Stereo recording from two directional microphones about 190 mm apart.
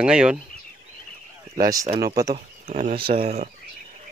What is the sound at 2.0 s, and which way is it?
Speech, 20° right (ahead or behind).